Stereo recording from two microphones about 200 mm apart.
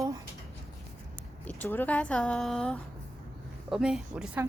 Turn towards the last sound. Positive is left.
turn(degrees=-5)  # may be behind; listen again after turning